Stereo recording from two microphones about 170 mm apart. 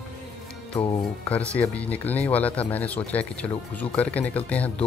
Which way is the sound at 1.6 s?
10° left (ahead or behind).